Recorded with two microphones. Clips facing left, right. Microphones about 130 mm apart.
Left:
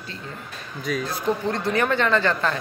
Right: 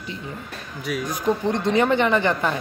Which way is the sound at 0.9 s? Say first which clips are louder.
Right 1 dB; 15° right (ahead or behind).